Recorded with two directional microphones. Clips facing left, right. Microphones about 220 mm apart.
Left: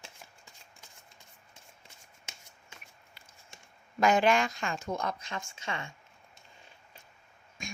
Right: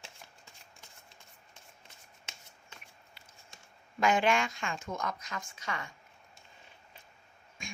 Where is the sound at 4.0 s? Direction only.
40° left (ahead or behind).